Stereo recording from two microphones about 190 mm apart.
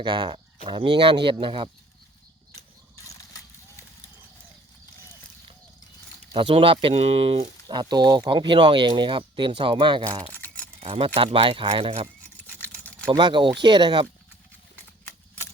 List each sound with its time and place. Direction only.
0.0 s speech: 25° right (ahead or behind)
3.1 s horse: 20° left (ahead or behind)
6.3 s speech: 25° right (ahead or behind)
10.3 s camera: 10° left (ahead or behind)
10.8 s speech: 30° right (ahead or behind)
12.5 s a sound: 10° left (ahead or behind)
13.1 s speech: 25° right (ahead or behind)